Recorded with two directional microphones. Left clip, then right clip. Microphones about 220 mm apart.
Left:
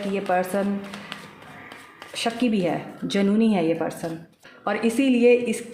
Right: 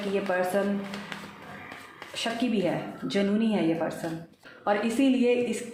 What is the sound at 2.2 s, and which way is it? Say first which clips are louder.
Speech: left 4 dB; 50° left (ahead or behind).